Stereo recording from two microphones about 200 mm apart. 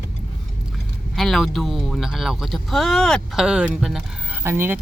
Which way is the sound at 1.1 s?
Centre (ahead or behind).